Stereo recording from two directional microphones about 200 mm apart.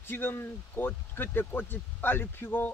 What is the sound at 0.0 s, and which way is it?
Speech, 10° left (ahead or behind).